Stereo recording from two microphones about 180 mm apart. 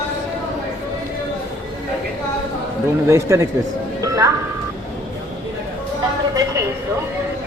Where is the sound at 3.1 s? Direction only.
15° right (ahead or behind).